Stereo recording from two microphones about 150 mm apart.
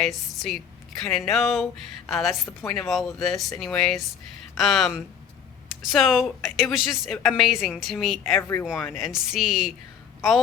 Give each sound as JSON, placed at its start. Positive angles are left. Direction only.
{"t": 0.0, "sound": "a woman's voice", "side_deg": 0}
{"t": 8.4, "sound": "speech", "side_deg": 20}
{"t": 9.0, "sound": "a woman's voice", "side_deg": -5}